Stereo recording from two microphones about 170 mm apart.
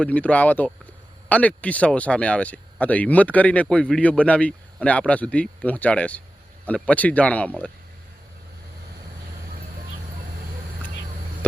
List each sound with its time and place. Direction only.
0.0 s speech: 10° left (ahead or behind)